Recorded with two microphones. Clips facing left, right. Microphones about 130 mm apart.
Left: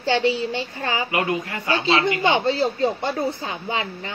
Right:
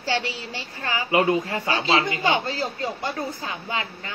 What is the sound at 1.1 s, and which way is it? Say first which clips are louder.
Speech: right 3 dB; 25° right (ahead or behind).